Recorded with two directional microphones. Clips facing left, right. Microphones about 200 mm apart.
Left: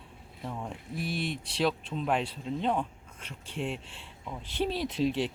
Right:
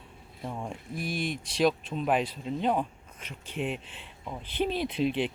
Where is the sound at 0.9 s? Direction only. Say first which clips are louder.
Right 1 dB; 25° left (ahead or behind).